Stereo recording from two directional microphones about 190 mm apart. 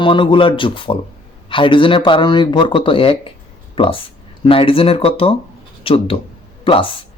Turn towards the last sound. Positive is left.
turn(degrees=30)  # may be behind; listen again after turning